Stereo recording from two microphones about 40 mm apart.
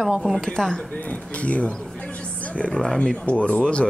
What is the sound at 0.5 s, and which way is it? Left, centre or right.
Speech, centre.